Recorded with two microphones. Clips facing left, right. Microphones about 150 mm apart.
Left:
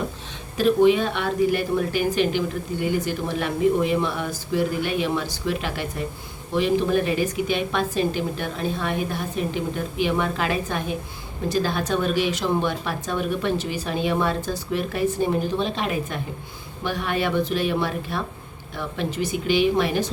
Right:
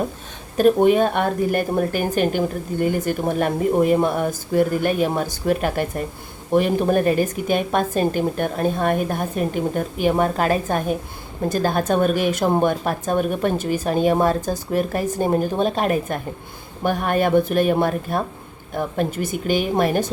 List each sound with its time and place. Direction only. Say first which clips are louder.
0.5 s a woman's voice: right 3 dB; 50° right (ahead or behind)